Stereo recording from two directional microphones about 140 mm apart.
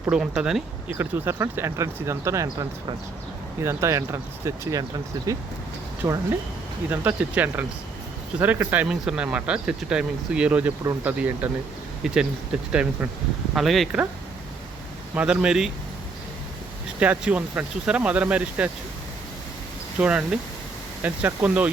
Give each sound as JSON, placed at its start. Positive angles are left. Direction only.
{"t": 0.1, "sound": "speech", "side_deg": -5}
{"t": 0.9, "sound": "speech", "side_deg": -15}
{"t": 6.9, "sound": "speech", "side_deg": -10}
{"t": 15.1, "sound": "speech", "side_deg": -10}
{"t": 17.0, "sound": "speech", "side_deg": -10}
{"t": 20.0, "sound": "speech", "side_deg": -10}